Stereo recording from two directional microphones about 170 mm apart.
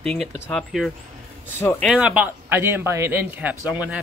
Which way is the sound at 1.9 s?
5° right (ahead or behind).